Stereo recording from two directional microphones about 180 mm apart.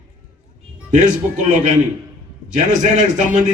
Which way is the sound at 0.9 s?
45° right (ahead or behind).